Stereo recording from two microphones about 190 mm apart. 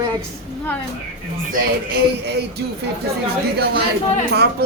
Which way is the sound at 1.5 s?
55° right (ahead or behind).